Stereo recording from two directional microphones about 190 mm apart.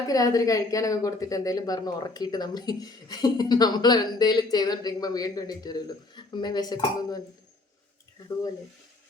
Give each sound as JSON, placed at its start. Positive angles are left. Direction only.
{"t": 0.1, "sound": "speech", "side_deg": 20}